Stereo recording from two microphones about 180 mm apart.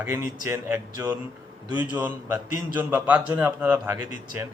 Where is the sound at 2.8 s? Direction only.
10° right (ahead or behind).